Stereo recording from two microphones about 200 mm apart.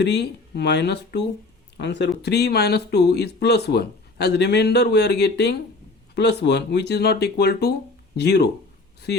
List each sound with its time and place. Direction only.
0.0 s speech: 55° left (ahead or behind)